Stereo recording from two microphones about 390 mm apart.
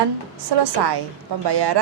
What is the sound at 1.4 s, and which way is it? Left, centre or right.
Speech, right.